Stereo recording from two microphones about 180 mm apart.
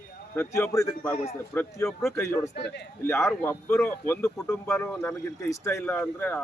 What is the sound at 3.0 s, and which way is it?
Speech, 15° left (ahead or behind).